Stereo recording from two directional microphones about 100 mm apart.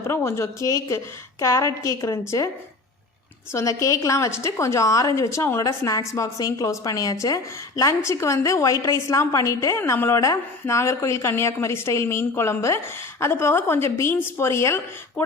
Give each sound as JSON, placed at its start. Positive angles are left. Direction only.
{"t": 0.1, "sound": "a woman's voice", "side_deg": 25}
{"t": 3.5, "sound": "a woman's voice", "side_deg": 30}